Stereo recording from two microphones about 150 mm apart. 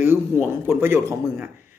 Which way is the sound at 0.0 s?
15° right (ahead or behind).